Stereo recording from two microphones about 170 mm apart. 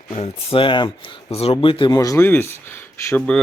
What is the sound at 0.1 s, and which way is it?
Speech, 30° left (ahead or behind).